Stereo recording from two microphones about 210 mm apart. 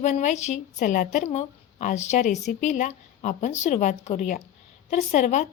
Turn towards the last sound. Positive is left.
turn(degrees=35)  # may be behind; listen again after turning